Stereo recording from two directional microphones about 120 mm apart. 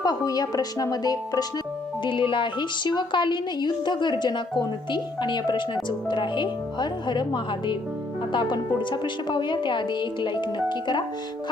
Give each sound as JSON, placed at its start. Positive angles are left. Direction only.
{"t": 0.0, "sound": "speech", "side_deg": 35}
{"t": 2.0, "sound": "speech", "side_deg": 45}